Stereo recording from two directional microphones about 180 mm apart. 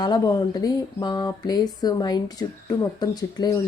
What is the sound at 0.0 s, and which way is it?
A woman's voice, 20° left (ahead or behind).